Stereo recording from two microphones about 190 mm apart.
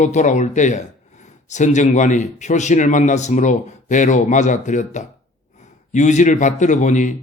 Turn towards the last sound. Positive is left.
turn(degrees=40)  # may be behind; listen again after turning